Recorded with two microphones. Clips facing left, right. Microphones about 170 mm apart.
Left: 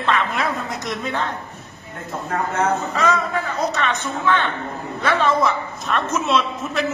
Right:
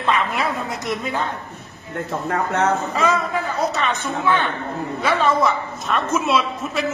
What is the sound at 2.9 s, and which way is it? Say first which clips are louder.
A man's voice: even; 5° right (ahead or behind).